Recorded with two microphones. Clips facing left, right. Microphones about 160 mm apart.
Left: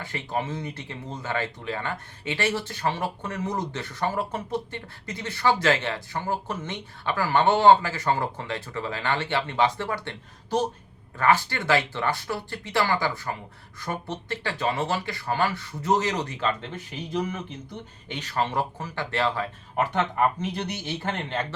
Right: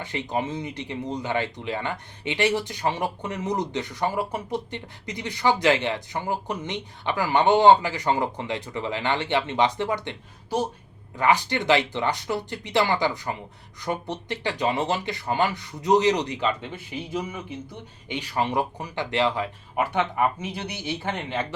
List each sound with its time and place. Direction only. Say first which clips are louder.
0.0 s speech: right 2 dB; 20° right (ahead or behind)